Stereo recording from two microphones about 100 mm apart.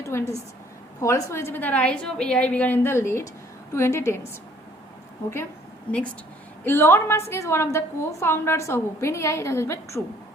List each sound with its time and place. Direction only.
0.0 s a sound: 25° left (ahead or behind)
1.0 s a woman's voice: 30° left (ahead or behind)
6.7 s a woman's voice: 25° left (ahead or behind)